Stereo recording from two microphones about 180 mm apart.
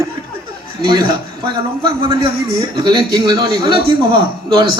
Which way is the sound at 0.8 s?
25° right (ahead or behind).